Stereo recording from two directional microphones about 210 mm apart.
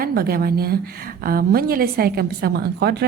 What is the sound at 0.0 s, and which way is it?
A woman's voice, 45° right (ahead or behind).